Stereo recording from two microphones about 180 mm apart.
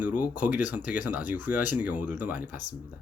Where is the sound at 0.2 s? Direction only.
10° right (ahead or behind).